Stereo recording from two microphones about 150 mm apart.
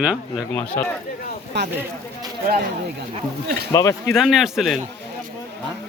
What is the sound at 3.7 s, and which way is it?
Speech, 20° left (ahead or behind).